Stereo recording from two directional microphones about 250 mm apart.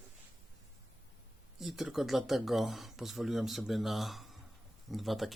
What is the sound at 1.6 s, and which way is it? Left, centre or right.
Speech, centre.